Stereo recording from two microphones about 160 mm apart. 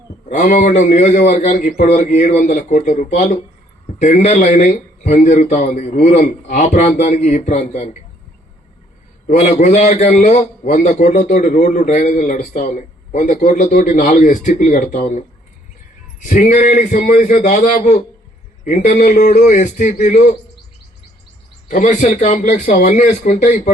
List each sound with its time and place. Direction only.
0.3 s a man's voice: 50° left (ahead or behind)
9.2 s a man's voice: 45° left (ahead or behind)
16.2 s a man's voice: 55° left (ahead or behind)
21.7 s a man's voice: 55° left (ahead or behind)